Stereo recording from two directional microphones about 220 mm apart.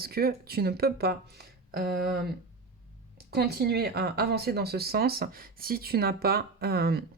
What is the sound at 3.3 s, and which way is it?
Speech, 45° right (ahead or behind).